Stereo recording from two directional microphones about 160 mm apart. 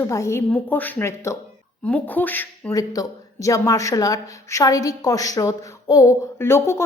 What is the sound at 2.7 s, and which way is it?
Speech, 20° left (ahead or behind).